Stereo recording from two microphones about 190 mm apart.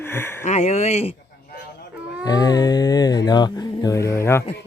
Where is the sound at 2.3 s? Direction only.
20° left (ahead or behind).